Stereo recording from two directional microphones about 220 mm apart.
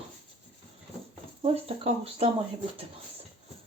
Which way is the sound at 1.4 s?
25° right (ahead or behind).